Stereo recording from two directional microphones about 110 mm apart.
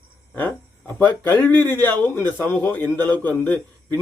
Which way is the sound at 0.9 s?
20° left (ahead or behind).